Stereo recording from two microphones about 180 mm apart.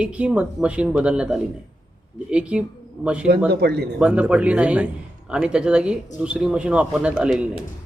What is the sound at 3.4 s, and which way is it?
Speech, 65° right (ahead or behind).